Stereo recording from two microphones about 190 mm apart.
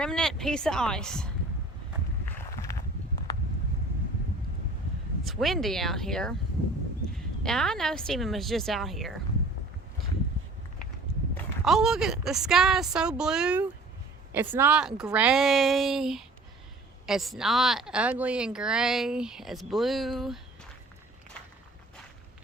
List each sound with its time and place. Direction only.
0.0 s a woman's voice: 5° left (ahead or behind)
2.5 s a sound: 15° left (ahead or behind)
5.2 s a woman's voice: centre (ahead or behind)
7.4 s a woman's voice: centre (ahead or behind)
11.6 s a woman's voice: centre (ahead or behind)